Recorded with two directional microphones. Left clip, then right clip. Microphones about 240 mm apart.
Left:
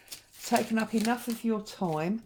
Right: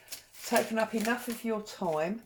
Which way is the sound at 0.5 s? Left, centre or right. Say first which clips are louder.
Even; left.